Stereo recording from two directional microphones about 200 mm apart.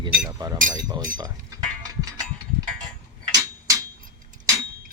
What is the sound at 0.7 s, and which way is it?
Speech, 20° right (ahead or behind).